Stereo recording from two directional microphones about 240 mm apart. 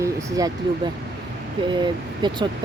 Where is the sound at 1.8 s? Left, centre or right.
Centre.